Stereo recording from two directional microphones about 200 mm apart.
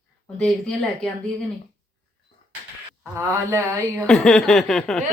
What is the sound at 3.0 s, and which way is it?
Speech, 15° right (ahead or behind).